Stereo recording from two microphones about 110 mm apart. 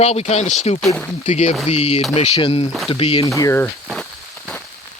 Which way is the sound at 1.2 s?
90° left.